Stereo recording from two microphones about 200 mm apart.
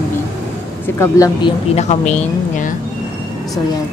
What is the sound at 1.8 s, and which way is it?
Speech, 35° left (ahead or behind).